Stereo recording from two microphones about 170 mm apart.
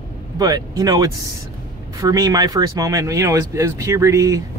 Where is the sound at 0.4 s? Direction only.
20° right (ahead or behind).